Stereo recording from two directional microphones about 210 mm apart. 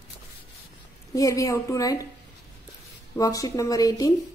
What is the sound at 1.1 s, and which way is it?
Speech, 15° left (ahead or behind).